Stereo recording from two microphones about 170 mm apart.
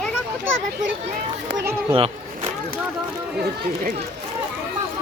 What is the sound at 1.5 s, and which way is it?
Speech, 90° right.